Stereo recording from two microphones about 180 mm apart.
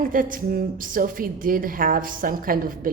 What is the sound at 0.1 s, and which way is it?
Mantra, 50° right (ahead or behind).